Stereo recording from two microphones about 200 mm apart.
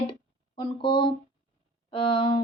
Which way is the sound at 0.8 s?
25° left (ahead or behind).